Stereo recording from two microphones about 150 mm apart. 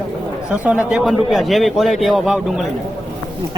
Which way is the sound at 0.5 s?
10° right (ahead or behind).